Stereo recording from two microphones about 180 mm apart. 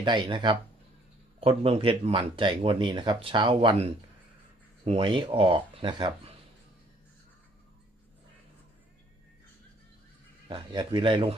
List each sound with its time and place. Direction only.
0.0 s speech: 25° right (ahead or behind)
4.9 s speech: 30° right (ahead or behind)
10.5 s speech: 25° right (ahead or behind)